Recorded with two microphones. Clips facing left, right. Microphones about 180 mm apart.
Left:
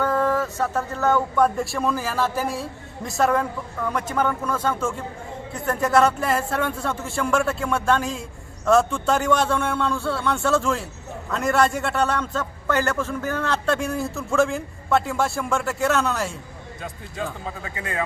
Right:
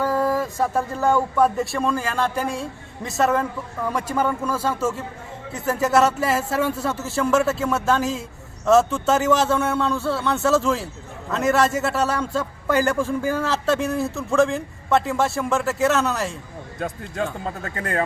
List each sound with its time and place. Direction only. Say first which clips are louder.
0.0 s a man's voice: even; 10° right (ahead or behind)
16.8 s speech: right 5 dB; 55° right (ahead or behind)